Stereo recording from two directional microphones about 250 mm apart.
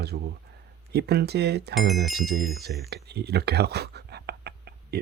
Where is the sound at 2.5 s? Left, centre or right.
Right.